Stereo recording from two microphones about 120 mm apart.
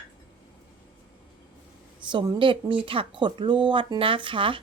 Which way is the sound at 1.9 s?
35° right (ahead or behind).